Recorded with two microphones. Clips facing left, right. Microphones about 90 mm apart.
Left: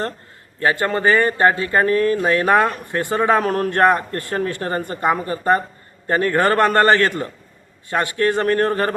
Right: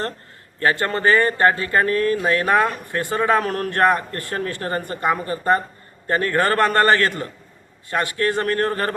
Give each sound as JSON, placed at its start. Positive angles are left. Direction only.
{"t": 0.6, "sound": "a man's voice", "side_deg": 15}